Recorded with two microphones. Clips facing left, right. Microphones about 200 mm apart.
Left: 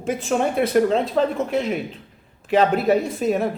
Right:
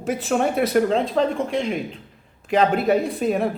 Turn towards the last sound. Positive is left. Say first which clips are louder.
# even
turn(degrees=0)  # may be behind; listen again after turning